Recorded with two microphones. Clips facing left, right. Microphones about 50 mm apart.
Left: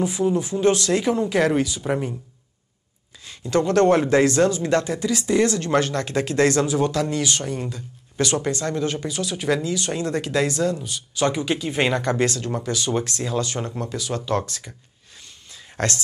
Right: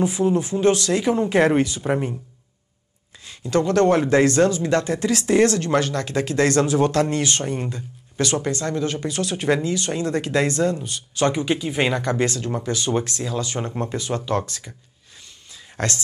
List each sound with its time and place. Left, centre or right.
0.0 s speech: right
0.7 s speech: left
1.0 s speech: right
3.4 s speech: left
4.1 s speech: right
5.8 s speech: left
6.5 s speech: right
8.2 s speech: left
9.0 s speech: right; by 12.6 s centre
12.6 s speech: right
15.8 s speech: right